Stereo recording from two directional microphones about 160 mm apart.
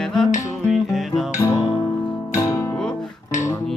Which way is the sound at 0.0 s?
Centre (ahead or behind).